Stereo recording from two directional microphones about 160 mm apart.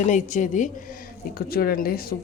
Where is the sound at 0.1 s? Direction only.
55° left (ahead or behind).